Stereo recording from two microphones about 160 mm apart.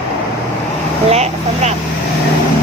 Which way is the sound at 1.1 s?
40° right (ahead or behind).